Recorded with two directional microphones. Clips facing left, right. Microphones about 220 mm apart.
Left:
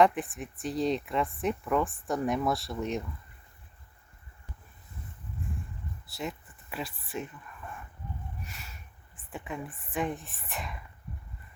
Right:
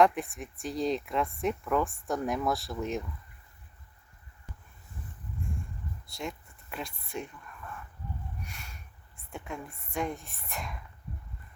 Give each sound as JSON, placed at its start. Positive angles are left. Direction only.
{"t": 0.0, "sound": "speech", "side_deg": 0}
{"t": 6.1, "sound": "speech", "side_deg": 5}
{"t": 8.4, "sound": "a sound", "side_deg": 0}
{"t": 9.1, "sound": "speech", "side_deg": 0}